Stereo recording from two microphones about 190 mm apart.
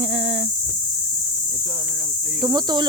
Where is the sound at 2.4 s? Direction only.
20° right (ahead or behind).